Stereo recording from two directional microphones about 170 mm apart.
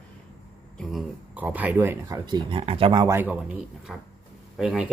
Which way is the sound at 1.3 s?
10° right (ahead or behind).